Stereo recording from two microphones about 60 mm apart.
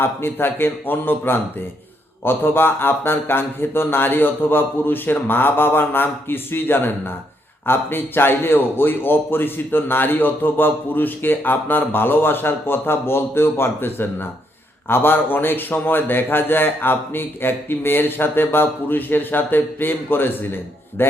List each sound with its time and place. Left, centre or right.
0.0 s a man's voice: left